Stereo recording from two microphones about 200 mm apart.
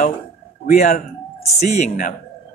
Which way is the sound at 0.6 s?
40° left (ahead or behind).